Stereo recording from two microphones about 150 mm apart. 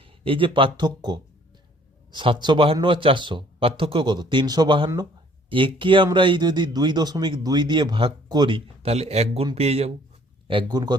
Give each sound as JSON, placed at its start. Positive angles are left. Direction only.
{"t": 0.0, "sound": "speech", "side_deg": -35}
{"t": 10.5, "sound": "a man's voice", "side_deg": -30}